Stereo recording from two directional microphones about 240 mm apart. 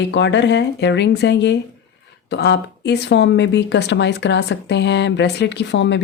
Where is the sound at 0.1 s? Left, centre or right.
Left.